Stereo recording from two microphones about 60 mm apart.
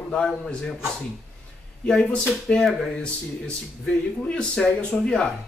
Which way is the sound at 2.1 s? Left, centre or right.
Centre.